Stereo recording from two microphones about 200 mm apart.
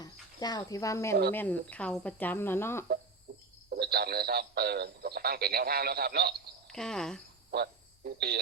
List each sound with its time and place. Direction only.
0.0 s speech: 20° left (ahead or behind)
3.3 s a sound: 45° right (ahead or behind)
3.7 s speech: 50° right (ahead or behind)
6.7 s speech: 5° left (ahead or behind)
7.5 s radio: 50° right (ahead or behind)